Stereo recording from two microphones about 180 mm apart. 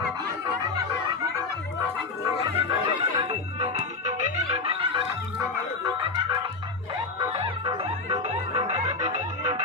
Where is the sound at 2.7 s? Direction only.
30° right (ahead or behind).